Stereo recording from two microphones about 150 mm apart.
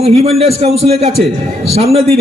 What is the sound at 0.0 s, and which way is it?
A man's voice, 40° right (ahead or behind).